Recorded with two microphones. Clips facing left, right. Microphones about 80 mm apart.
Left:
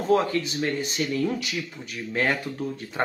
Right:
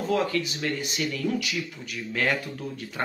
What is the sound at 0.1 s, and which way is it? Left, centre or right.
Speech, left.